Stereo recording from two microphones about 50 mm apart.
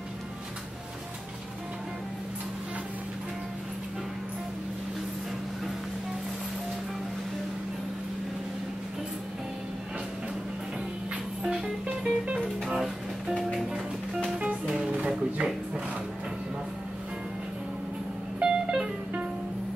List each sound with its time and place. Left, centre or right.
11.4 s music: centre
14.9 s a sound: right
18.4 s music: centre